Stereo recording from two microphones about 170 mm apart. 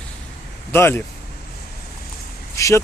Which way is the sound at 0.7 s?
10° left (ahead or behind).